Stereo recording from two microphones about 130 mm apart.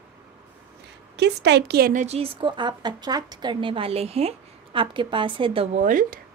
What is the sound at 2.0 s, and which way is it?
A woman's voice, 50° right (ahead or behind).